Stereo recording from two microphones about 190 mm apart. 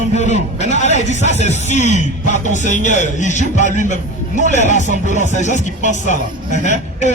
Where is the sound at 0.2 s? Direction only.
35° left (ahead or behind).